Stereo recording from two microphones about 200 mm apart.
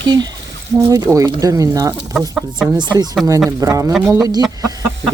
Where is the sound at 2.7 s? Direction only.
20° right (ahead or behind).